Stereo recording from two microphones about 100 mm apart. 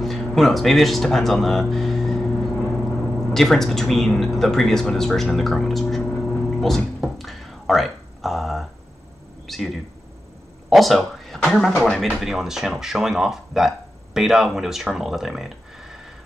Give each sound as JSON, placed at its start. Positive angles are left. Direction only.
{"t": 0.0, "sound": "speech", "side_deg": 0}
{"t": 3.3, "sound": "speech", "side_deg": 5}